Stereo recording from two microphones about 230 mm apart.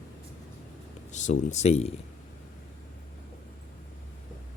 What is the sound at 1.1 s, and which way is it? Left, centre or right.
Speech, left.